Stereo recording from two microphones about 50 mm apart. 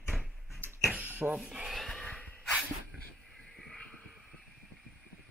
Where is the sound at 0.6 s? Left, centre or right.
Right.